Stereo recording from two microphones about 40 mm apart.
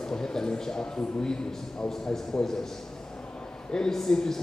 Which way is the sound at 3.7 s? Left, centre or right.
Centre.